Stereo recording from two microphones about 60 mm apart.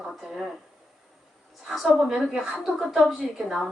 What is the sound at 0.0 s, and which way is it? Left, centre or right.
Speech, centre.